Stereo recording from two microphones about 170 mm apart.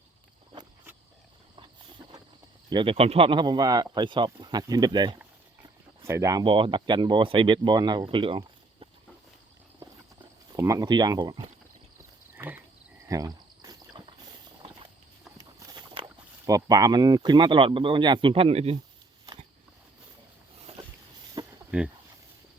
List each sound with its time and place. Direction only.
2.6 s speech: 30° right (ahead or behind)
10.5 s speech: 20° right (ahead or behind)
12.3 s frog: 10° right (ahead or behind)
13.1 s a sound: 20° right (ahead or behind)
15.4 s a sound: 20° right (ahead or behind)
16.0 s speech: 20° right (ahead or behind); by 18.8 s 35° right (ahead or behind)
20.7 s vehicle: 35° right (ahead or behind)
21.4 s a sound: 25° right (ahead or behind)
21.7 s speech: 5° right (ahead or behind)